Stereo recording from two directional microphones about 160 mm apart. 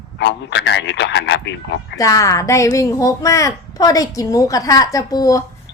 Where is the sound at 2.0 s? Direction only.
20° left (ahead or behind).